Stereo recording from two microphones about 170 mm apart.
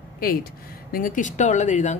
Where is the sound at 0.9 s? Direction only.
55° left (ahead or behind).